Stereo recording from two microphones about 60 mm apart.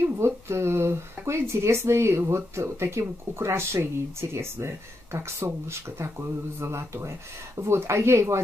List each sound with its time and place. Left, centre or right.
0.0 s speech: right